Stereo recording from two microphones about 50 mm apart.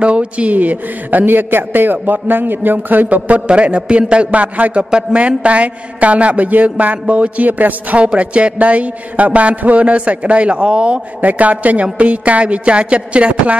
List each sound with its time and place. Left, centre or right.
0.0 s a man's voice: right
11.1 s a man's voice: right